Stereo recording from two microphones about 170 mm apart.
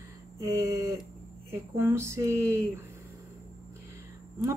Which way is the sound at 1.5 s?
15° right (ahead or behind).